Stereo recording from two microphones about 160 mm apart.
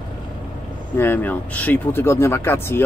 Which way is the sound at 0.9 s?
10° left (ahead or behind).